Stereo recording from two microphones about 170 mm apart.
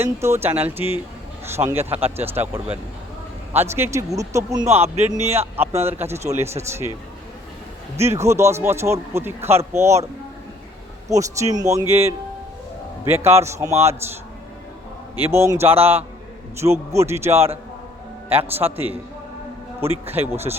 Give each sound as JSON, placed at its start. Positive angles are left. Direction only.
{"t": 0.0, "sound": "speech", "side_deg": -15}
{"t": 7.9, "sound": "speech", "side_deg": -15}
{"t": 11.1, "sound": "speech", "side_deg": -20}
{"t": 15.2, "sound": "speech", "side_deg": -15}